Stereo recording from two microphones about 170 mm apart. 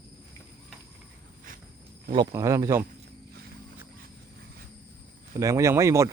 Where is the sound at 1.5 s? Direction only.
55° right (ahead or behind).